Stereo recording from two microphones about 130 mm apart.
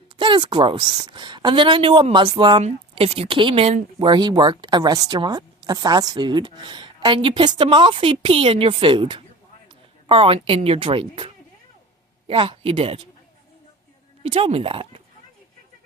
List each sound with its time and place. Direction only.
0.2 s speech: 35° right (ahead or behind)
2.6 s speech: 55° right (ahead or behind)
4.1 s speech: 35° right (ahead or behind)
12.3 s speech: 45° right (ahead or behind)
14.3 s speech: 45° right (ahead or behind)